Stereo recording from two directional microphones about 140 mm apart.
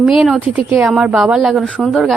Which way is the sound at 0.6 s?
15° right (ahead or behind).